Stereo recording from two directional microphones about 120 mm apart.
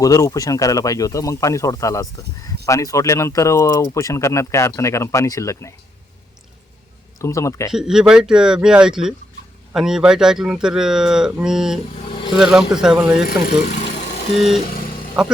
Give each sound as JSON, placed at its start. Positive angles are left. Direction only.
{"t": 0.0, "sound": "speech", "side_deg": 30}
{"t": 7.2, "sound": "speech", "side_deg": 25}
{"t": 7.7, "sound": "speech", "side_deg": -5}